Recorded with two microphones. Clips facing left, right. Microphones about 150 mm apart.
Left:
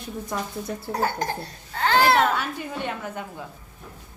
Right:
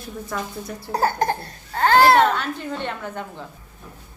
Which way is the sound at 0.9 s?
40° right (ahead or behind).